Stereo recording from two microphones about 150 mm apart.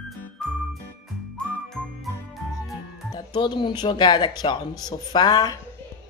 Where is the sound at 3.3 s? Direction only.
30° left (ahead or behind).